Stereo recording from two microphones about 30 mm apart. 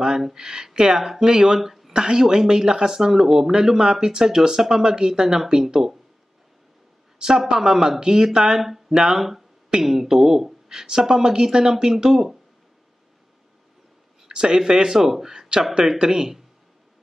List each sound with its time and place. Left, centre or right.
0.0 s speech: centre
2.0 s speech: right
7.2 s speech: right
8.5 s speech: centre
8.9 s speech: centre
14.2 s a sound: right
14.6 s speech: centre
15.3 s a sound: right
16.0 s speech: right